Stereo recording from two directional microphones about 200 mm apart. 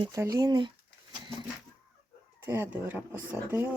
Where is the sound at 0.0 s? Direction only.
15° right (ahead or behind).